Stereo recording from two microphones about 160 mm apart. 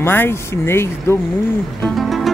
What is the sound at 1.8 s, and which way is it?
Music, centre (ahead or behind).